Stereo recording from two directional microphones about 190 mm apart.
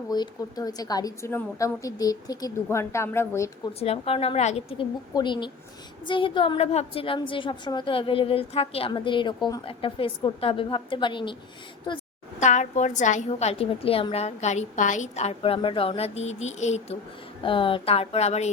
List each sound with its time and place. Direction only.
0.1 s a woman's voice: 20° left (ahead or behind)
3.8 s a woman's voice: 30° left (ahead or behind)
5.1 s a woman's voice: 25° left (ahead or behind)
12.4 s a woman's voice: 40° left (ahead or behind)
17.4 s a woman's voice: 25° left (ahead or behind)